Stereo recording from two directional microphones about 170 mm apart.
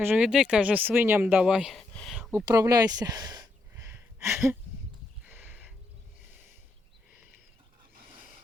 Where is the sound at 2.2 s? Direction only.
5° right (ahead or behind).